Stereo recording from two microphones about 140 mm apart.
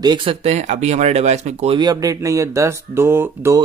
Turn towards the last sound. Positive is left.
turn(degrees=-15)  # may be behind; listen again after turning